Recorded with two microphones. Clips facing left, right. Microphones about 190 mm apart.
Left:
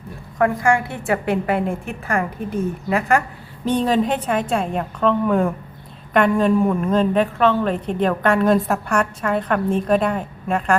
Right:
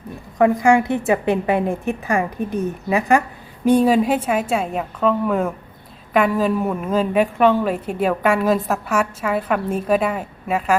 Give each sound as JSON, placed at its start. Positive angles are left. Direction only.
{"t": 0.3, "sound": "a woman's voice", "side_deg": -20}